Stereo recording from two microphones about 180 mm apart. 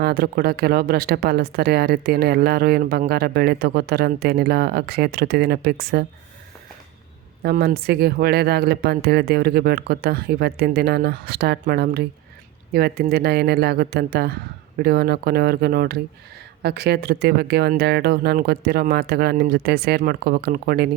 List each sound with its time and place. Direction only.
0.0 s speech: 60° right (ahead or behind)
7.4 s speech: 60° right (ahead or behind)